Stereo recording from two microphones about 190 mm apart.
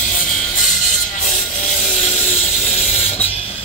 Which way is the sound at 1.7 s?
35° left (ahead or behind).